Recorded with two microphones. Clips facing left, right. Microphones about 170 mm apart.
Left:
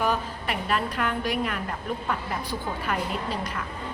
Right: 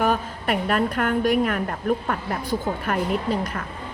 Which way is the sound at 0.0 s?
55° right (ahead or behind).